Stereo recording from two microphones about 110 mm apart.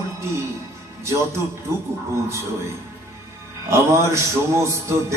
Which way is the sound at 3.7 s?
25° right (ahead or behind).